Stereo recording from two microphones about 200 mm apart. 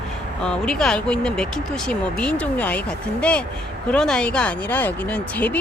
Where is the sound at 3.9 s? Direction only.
5° left (ahead or behind).